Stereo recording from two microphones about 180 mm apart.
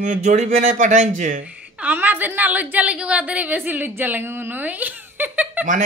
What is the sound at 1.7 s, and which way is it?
A woman's voice, 10° right (ahead or behind).